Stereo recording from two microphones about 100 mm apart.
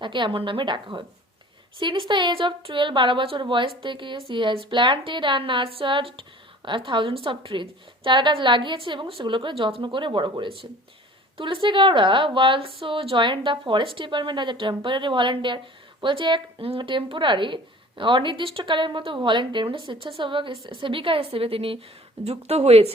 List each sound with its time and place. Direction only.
0.0 s a woman's voice: 55° right (ahead or behind)
16.6 s a woman's voice: 70° right (ahead or behind)
22.2 s speech: 90° right